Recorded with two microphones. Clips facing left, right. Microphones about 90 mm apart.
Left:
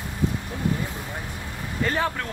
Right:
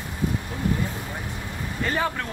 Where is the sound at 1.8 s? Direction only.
Centre (ahead or behind).